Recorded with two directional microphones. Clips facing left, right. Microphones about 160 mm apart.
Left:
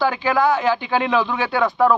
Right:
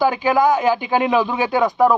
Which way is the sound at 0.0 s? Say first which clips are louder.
Right 2 dB; 15° right (ahead or behind).